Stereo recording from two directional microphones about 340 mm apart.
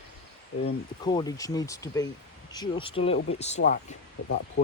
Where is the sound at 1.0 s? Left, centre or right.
Centre.